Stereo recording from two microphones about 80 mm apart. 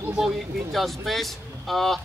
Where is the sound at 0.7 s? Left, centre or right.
Centre.